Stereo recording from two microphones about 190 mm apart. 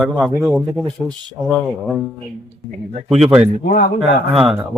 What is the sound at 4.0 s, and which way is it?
Speech, 5° right (ahead or behind).